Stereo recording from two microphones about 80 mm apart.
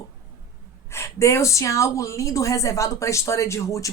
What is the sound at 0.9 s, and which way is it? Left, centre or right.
Speech, left.